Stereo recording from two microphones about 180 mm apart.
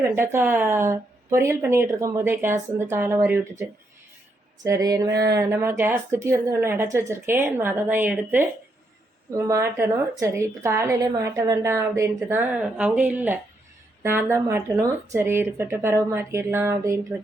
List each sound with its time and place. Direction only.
0.0 s a woman's voice: 15° right (ahead or behind)
4.6 s a sound: 20° right (ahead or behind)
5.2 s a woman's voice: 20° right (ahead or behind)